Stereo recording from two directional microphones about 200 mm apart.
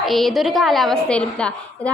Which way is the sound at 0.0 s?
Centre (ahead or behind).